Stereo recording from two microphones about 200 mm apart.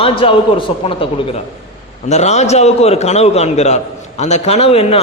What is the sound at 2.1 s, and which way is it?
A man's voice, 35° left (ahead or behind).